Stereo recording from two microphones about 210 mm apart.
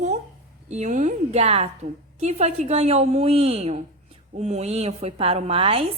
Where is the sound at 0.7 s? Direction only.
35° right (ahead or behind).